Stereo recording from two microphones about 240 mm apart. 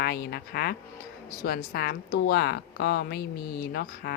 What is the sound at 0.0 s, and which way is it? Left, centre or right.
Speech, left.